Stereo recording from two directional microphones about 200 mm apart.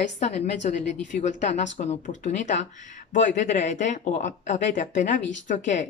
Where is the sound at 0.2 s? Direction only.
35° left (ahead or behind).